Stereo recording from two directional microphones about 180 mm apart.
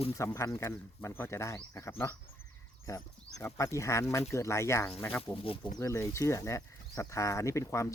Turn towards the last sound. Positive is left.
turn(degrees=15)  # may be behind; listen again after turning